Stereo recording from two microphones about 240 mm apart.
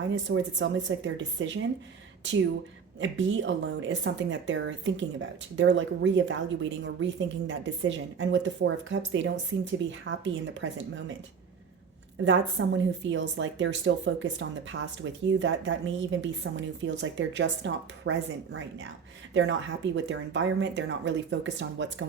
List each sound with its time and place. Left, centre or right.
0.3 s speech: right
3.0 s speech: right
12.2 s speech: right